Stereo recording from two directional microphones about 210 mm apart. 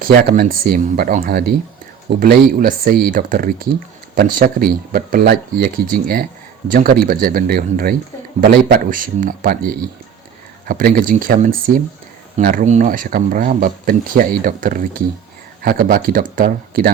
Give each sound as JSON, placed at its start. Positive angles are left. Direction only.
{"t": 0.0, "sound": "speech", "side_deg": -45}